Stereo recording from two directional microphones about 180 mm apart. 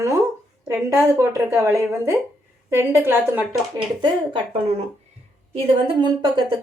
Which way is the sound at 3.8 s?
25° right (ahead or behind).